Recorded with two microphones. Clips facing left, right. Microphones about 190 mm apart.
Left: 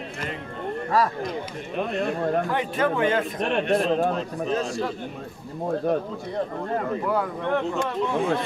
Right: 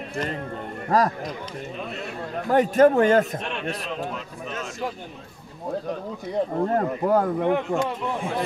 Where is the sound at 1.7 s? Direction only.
55° left (ahead or behind).